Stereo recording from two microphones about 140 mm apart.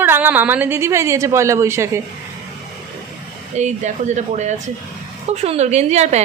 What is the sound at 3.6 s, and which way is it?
A woman's voice, 55° right (ahead or behind).